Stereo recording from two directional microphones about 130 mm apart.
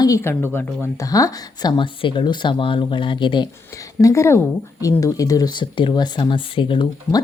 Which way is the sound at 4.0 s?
20° left (ahead or behind).